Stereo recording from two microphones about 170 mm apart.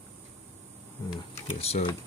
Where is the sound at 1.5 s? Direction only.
40° left (ahead or behind).